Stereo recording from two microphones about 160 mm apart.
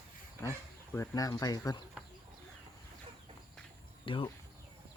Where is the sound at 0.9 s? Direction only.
20° left (ahead or behind).